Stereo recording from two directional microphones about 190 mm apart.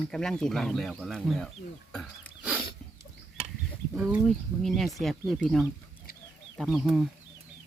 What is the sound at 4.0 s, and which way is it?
Speech, centre (ahead or behind).